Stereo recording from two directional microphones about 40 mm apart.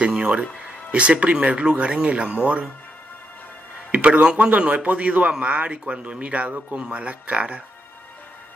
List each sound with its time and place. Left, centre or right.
0.2 s speech: right
3.9 s speech: right